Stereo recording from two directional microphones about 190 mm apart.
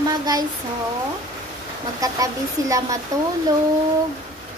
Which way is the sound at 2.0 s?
20° right (ahead or behind).